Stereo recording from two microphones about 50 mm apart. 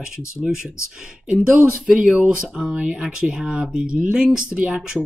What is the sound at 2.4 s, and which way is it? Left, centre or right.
Speech, centre.